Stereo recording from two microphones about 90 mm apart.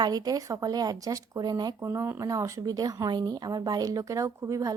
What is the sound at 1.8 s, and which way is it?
Speech, 30° right (ahead or behind).